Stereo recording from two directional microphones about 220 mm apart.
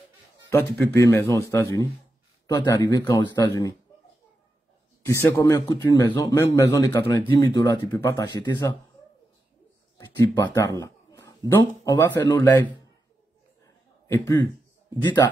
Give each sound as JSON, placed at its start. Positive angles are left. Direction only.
{"t": 0.5, "sound": "a man's voice", "side_deg": 10}
{"t": 5.4, "sound": "a man's voice", "side_deg": 20}
{"t": 9.9, "sound": "a man's voice", "side_deg": 15}
{"t": 14.0, "sound": "a man's voice", "side_deg": 15}